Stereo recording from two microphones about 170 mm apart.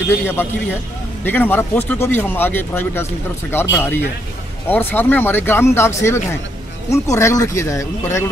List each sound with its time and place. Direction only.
1.2 s speech: 10° left (ahead or behind)